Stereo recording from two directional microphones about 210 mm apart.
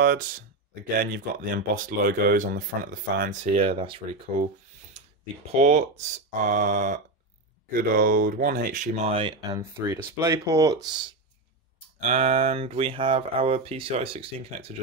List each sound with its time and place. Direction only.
0.0 s speech: 45° right (ahead or behind)
3.5 s speech: 25° right (ahead or behind)
5.6 s speech: 35° right (ahead or behind)
9.6 s speech: 10° right (ahead or behind)
12.0 s speech: 30° right (ahead or behind)